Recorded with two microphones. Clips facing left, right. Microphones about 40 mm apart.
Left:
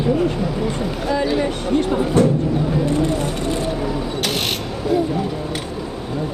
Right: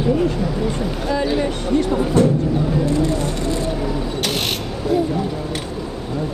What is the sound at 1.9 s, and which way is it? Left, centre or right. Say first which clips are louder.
Speech: even; left.